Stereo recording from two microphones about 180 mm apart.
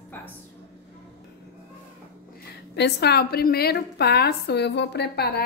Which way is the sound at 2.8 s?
70° left (ahead or behind).